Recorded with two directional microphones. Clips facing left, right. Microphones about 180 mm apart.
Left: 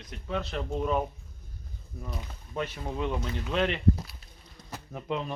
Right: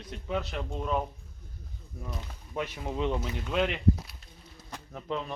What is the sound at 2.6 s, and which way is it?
Speech, 15° right (ahead or behind).